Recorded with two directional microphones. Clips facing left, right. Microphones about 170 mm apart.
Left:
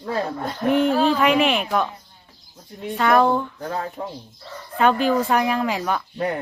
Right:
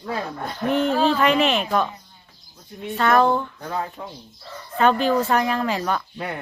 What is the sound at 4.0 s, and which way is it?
Speech, 35° left (ahead or behind).